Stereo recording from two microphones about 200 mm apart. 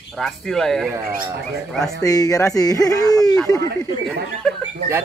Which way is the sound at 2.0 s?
15° left (ahead or behind).